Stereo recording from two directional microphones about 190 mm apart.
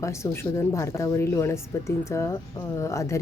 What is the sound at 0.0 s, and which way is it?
Speech, 15° left (ahead or behind).